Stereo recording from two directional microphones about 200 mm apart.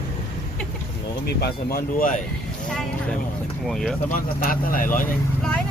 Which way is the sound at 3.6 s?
Centre (ahead or behind).